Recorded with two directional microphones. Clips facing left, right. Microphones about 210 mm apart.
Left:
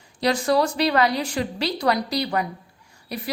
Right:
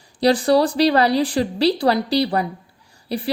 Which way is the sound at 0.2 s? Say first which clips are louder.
Right 5 dB; 35° right (ahead or behind).